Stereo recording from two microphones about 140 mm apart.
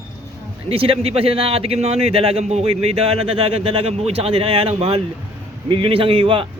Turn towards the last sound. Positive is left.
turn(degrees=-40)  # may be behind; listen again after turning